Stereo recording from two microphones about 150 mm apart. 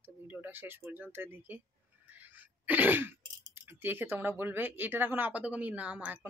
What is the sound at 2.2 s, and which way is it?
Throat clearing, 10° right (ahead or behind).